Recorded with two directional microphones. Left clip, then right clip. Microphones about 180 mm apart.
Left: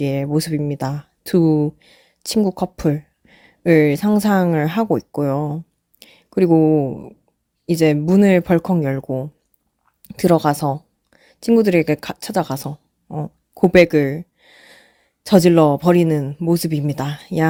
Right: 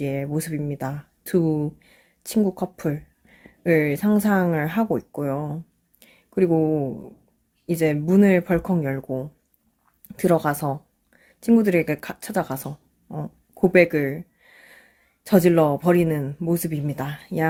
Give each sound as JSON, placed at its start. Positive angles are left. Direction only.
{"t": 0.0, "sound": "speech", "side_deg": 45}